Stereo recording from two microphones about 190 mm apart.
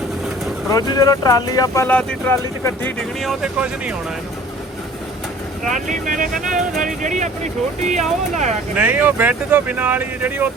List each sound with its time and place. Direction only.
0.7 s speech: 20° left (ahead or behind)
2.8 s speech: centre (ahead or behind)
5.6 s speech: 40° right (ahead or behind)
8.7 s speech: 5° right (ahead or behind)